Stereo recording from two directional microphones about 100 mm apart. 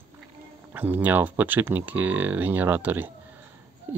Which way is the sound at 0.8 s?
20° right (ahead or behind).